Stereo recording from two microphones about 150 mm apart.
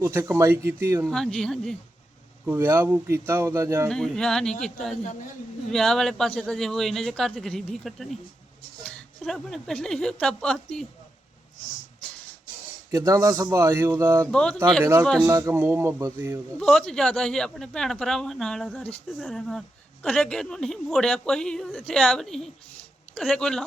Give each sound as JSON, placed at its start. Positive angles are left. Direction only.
{"t": 0.0, "sound": "speech", "side_deg": -15}
{"t": 1.0, "sound": "speech", "side_deg": 0}
{"t": 2.5, "sound": "speech", "side_deg": -15}
{"t": 3.8, "sound": "a woman's voice", "side_deg": 5}
{"t": 12.9, "sound": "speech", "side_deg": -20}
{"t": 14.3, "sound": "speech", "side_deg": 5}
{"t": 15.3, "sound": "speech", "side_deg": -20}
{"t": 16.6, "sound": "speech", "side_deg": 5}